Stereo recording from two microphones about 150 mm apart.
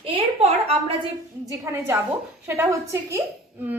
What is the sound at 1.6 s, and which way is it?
A woman's voice, 20° right (ahead or behind).